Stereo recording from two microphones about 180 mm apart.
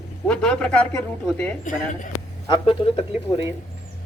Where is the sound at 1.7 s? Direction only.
45° left (ahead or behind).